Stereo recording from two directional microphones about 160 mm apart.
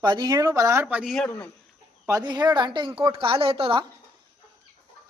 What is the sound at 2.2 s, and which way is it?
A woman's voice, 25° right (ahead or behind).